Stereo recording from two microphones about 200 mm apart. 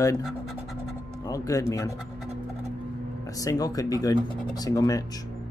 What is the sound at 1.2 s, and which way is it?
Speech, 15° left (ahead or behind).